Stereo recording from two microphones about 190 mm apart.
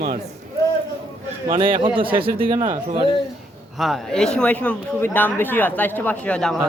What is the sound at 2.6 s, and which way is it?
Speech, 40° right (ahead or behind).